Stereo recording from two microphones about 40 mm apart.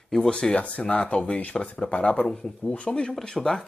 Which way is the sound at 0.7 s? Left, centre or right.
Left.